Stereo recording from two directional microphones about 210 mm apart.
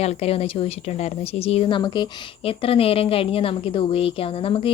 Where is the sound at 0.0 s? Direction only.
30° left (ahead or behind).